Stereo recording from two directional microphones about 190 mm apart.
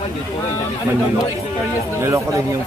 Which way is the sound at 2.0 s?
15° right (ahead or behind).